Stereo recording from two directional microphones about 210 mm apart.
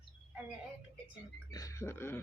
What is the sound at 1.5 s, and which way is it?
Speech, 15° left (ahead or behind).